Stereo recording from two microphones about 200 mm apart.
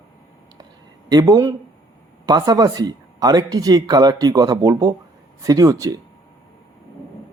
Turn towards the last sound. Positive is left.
turn(degrees=-15)  # may be behind; listen again after turning